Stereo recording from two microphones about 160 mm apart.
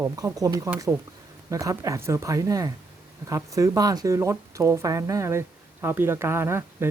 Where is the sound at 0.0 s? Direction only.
20° right (ahead or behind).